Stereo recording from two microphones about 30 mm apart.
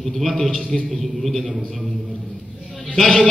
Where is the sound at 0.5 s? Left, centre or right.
Left.